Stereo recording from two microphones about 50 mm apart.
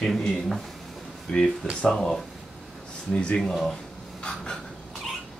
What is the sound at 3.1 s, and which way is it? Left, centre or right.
Speech, left.